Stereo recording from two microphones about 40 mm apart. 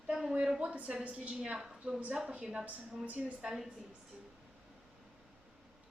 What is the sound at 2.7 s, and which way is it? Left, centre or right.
Speech, right.